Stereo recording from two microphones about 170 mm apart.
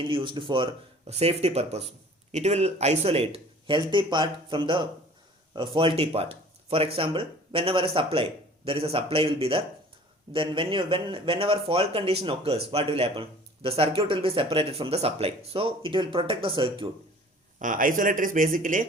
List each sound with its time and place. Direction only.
0.0 s speech: 30° right (ahead or behind)
17.6 s speech: 50° right (ahead or behind)